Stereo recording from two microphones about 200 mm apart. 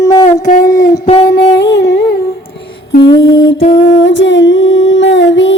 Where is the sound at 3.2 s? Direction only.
70° left (ahead or behind).